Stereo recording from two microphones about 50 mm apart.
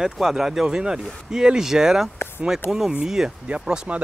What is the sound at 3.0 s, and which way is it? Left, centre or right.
Speech, centre.